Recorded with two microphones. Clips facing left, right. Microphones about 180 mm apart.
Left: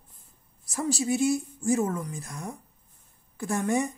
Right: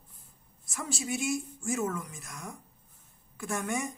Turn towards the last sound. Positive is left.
turn(degrees=35)  # may be behind; listen again after turning